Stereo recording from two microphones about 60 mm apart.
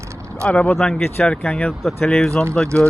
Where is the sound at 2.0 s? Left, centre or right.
Centre.